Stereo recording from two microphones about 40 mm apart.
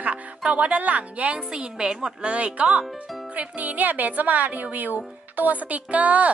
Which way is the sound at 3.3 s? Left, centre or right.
Right.